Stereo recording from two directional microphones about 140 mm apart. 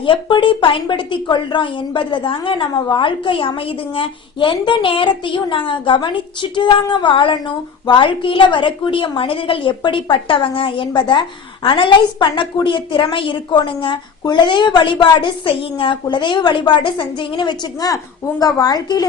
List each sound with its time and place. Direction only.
0.0 s a woman's voice: 35° left (ahead or behind)